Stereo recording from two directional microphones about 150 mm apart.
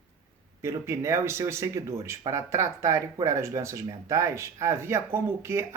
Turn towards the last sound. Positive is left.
turn(degrees=-15)  # may be behind; listen again after turning